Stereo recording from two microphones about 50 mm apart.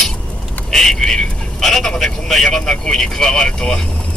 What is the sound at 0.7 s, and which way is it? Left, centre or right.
Vehicle, centre.